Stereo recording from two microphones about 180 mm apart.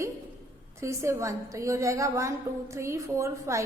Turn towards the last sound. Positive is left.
turn(degrees=-15)  # may be behind; listen again after turning